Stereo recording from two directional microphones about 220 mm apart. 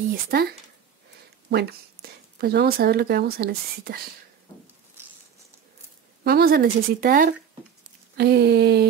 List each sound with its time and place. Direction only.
0.1 s speech: 45° right (ahead or behind)
6.2 s speech: 45° right (ahead or behind)